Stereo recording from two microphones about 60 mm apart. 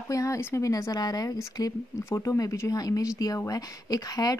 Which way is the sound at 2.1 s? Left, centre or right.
Left.